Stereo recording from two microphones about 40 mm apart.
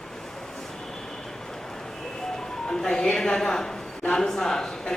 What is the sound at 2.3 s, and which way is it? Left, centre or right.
A woman's voice, centre.